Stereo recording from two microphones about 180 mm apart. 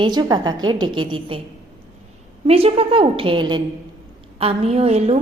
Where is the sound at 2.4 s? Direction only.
30° right (ahead or behind).